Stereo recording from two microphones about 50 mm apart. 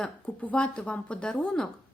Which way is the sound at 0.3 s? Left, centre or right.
Left.